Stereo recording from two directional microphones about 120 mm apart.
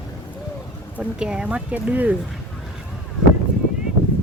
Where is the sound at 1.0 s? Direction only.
5° right (ahead or behind).